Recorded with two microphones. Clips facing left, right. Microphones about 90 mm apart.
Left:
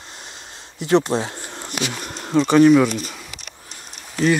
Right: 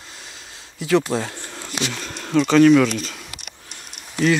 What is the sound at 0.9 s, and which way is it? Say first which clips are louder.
Speech: left 2 dB; 25° left (ahead or behind).